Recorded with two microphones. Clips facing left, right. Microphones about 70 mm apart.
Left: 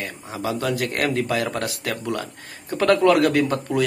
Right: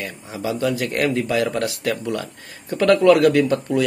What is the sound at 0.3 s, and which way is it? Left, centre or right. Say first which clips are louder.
Speech: right 2 dB; left.